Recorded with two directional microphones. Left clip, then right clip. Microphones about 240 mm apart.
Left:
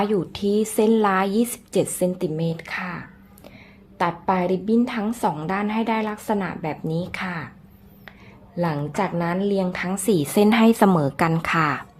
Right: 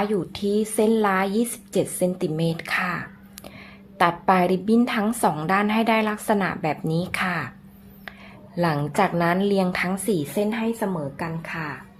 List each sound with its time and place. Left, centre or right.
0.0 s a woman's voice: centre
8.5 s a woman's voice: centre
10.1 s a woman's voice: left